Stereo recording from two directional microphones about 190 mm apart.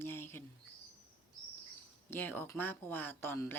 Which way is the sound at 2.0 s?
10° left (ahead or behind).